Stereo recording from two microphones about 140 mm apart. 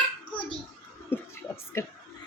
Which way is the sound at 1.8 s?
20° left (ahead or behind).